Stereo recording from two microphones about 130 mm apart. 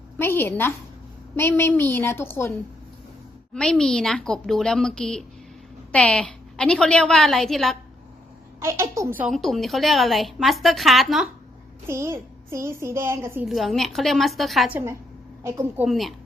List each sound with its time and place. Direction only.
0.2 s a woman's voice: 15° left (ahead or behind)
3.5 s a woman's voice: 5° left (ahead or behind)
8.6 s a child's voice: 20° right (ahead or behind)
9.2 s a woman's voice: centre (ahead or behind)
11.9 s a child's voice: 20° right (ahead or behind)
13.5 s a woman's voice: centre (ahead or behind)
14.7 s a woman's voice: 15° right (ahead or behind)
15.9 s a woman's voice: centre (ahead or behind)